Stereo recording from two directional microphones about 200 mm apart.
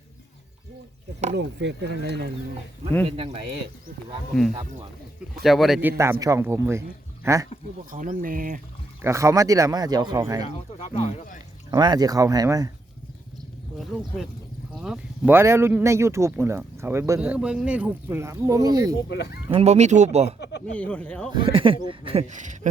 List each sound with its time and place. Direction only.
1.4 s speech: 60° right (ahead or behind)
3.1 s speech: 30° right (ahead or behind)
5.4 s a man's voice: centre (ahead or behind)
6.0 s speech: 15° right (ahead or behind)
7.9 s speech: 40° right (ahead or behind)
9.0 s speech: 15° right (ahead or behind)
10.4 s speech: 25° left (ahead or behind)
11.7 s speech: 20° right (ahead or behind)
14.8 s speech: 5° right (ahead or behind)
19.1 s speech: 55° left (ahead or behind)
19.5 s speech: 35° right (ahead or behind)
20.7 s a man's voice: 5° left (ahead or behind)
21.3 s speech: 25° right (ahead or behind)